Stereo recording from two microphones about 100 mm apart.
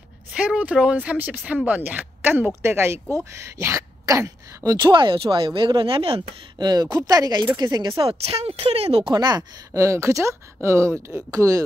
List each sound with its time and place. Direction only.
0.3 s speech: 10° right (ahead or behind); by 4.7 s 30° right (ahead or behind)
4.7 s speech: 50° right (ahead or behind)
6.6 s speech: 40° right (ahead or behind)
7.9 s speech: 65° right (ahead or behind); by 9.0 s 80° right
9.0 s speech: 45° right (ahead or behind)